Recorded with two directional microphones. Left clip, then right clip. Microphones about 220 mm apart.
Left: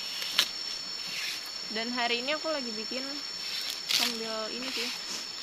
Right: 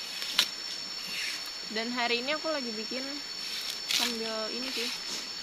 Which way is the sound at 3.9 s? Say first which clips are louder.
Left 1 dB; 15° left (ahead or behind).